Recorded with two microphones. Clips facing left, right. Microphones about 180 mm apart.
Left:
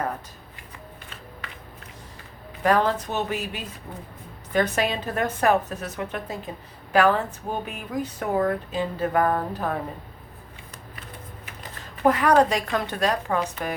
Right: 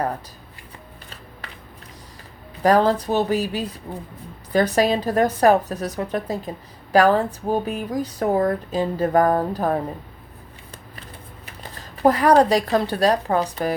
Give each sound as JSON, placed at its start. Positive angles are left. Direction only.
{"t": 2.6, "sound": "speech", "side_deg": -35}
{"t": 11.8, "sound": "speech", "side_deg": -35}